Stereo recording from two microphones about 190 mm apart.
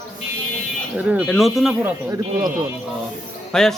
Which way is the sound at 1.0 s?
5° right (ahead or behind).